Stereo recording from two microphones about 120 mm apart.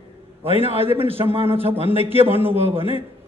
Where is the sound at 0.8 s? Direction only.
20° right (ahead or behind).